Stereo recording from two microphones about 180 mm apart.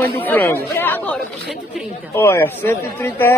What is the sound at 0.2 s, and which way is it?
A man's voice, 10° left (ahead or behind).